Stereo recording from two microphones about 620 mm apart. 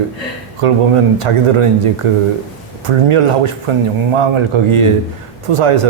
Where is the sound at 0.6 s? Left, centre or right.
Right.